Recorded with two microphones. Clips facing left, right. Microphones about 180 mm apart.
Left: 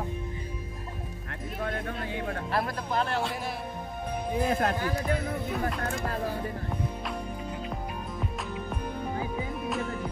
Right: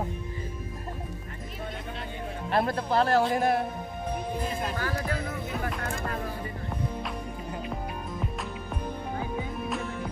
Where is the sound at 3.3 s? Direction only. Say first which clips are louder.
Right 10 dB; 50° right (ahead or behind).